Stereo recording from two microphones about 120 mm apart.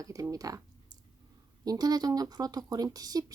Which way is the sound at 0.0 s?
30° right (ahead or behind).